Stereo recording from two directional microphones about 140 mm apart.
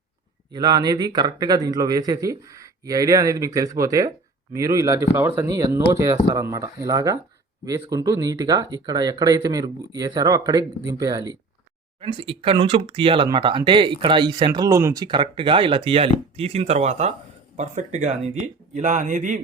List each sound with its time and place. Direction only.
0.5 s speech: 30° right (ahead or behind)
11.9 s speech: 40° right (ahead or behind); by 15.0 s 20° right (ahead or behind)
15.0 s speech: 35° right (ahead or behind); by 19.4 s 65° right (ahead or behind)